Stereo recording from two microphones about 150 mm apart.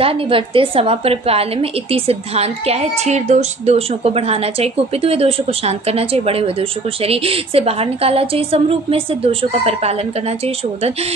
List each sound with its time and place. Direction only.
0.0 s a woman's voice: 40° right (ahead or behind)